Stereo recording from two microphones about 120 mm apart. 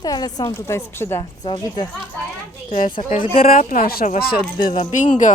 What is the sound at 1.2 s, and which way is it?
Speech, 35° left (ahead or behind).